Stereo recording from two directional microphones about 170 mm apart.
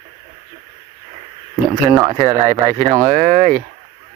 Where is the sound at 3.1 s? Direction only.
40° right (ahead or behind).